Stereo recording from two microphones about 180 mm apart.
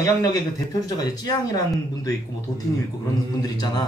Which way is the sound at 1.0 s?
20° left (ahead or behind).